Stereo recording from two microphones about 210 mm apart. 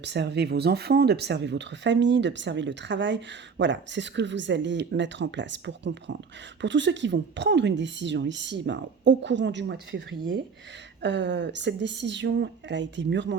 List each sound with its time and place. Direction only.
0.0 s speech: 55° right (ahead or behind)
11.0 s speech: 55° right (ahead or behind)